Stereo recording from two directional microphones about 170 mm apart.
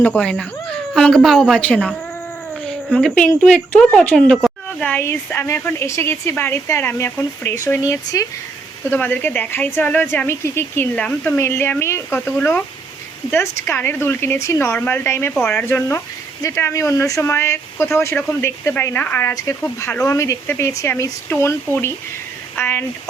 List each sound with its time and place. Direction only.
0.0 s a woman's voice: 5° left (ahead or behind)